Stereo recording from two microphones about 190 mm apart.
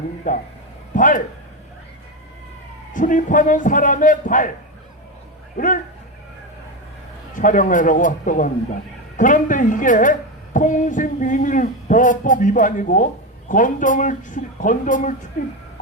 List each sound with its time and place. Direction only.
0.3 s a man's voice: 40° left (ahead or behind)
2.9 s a man's voice: 45° left (ahead or behind)
5.5 s a man's voice: 45° left (ahead or behind)
7.3 s a man's voice: 45° left (ahead or behind)